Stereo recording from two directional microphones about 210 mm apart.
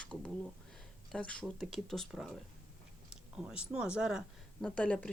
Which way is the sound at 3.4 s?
5° right (ahead or behind).